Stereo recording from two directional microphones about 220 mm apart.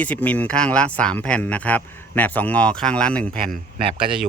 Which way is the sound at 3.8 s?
25° right (ahead or behind).